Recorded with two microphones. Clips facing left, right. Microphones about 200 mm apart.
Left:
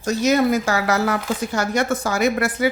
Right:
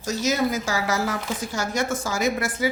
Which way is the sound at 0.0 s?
60° left (ahead or behind).